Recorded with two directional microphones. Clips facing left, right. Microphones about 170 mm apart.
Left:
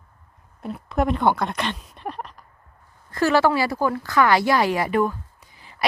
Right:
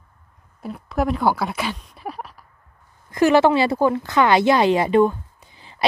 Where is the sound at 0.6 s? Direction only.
Centre (ahead or behind).